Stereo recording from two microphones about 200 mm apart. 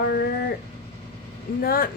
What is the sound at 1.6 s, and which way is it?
Speech, 45° left (ahead or behind).